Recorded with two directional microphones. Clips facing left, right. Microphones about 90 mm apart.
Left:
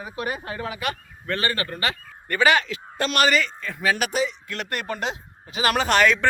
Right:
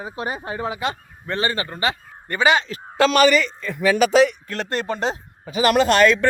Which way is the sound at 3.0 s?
90° right.